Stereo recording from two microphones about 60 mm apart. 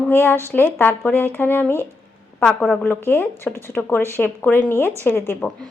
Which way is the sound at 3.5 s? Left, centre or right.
Right.